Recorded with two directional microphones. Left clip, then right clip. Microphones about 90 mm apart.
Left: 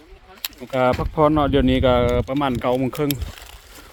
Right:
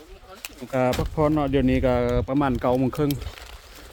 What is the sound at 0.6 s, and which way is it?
Speech, 5° left (ahead or behind).